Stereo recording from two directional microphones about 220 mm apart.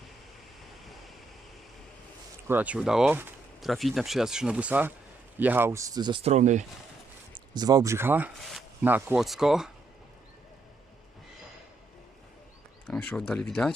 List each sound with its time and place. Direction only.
2.5 s speech: 5° right (ahead or behind); by 6.7 s 35° right (ahead or behind)
7.5 s speech: 15° right (ahead or behind)
12.9 s speech: 5° left (ahead or behind)